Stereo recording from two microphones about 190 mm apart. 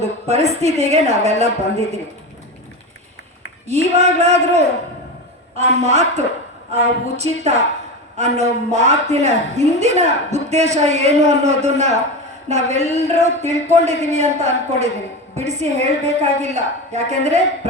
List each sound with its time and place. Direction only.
0.0 s a woman's voice: 35° right (ahead or behind)
3.7 s a woman's voice: 35° right (ahead or behind)